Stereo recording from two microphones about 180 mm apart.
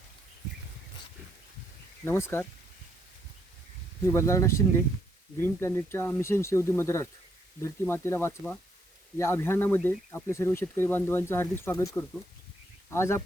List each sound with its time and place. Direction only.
2.0 s speech: 15° left (ahead or behind)
4.0 s speech: 15° left (ahead or behind)